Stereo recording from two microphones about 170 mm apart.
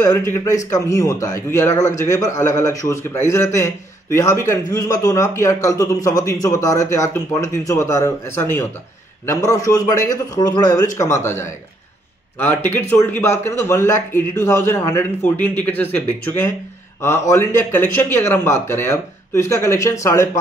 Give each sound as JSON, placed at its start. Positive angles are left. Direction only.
{"t": 0.0, "sound": "a man's voice", "side_deg": 15}